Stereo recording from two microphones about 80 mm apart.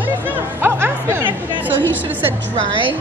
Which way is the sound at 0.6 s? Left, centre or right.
Right.